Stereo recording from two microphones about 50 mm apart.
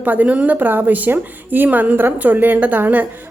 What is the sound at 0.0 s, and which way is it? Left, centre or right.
A woman's voice, right.